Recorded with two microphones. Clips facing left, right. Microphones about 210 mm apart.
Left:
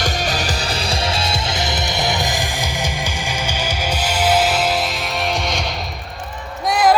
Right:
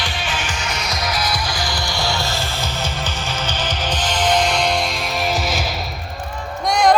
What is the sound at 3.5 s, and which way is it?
Music, 10° left (ahead or behind).